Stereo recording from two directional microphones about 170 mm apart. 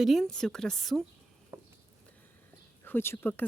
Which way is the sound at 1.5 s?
20° right (ahead or behind).